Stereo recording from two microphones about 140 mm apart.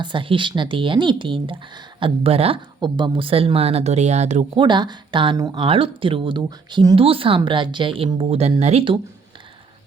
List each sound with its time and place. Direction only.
0.0 s speech: 35° right (ahead or behind); by 4.4 s 55° right (ahead or behind)
4.5 s speech: 35° right (ahead or behind)